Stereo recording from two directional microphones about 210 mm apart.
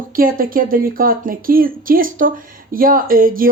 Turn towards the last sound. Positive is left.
turn(degrees=-45)  # may be behind; listen again after turning